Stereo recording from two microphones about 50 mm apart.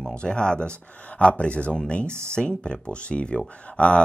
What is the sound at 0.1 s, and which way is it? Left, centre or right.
Speech, centre.